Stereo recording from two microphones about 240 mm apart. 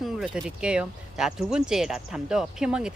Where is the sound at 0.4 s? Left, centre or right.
Centre.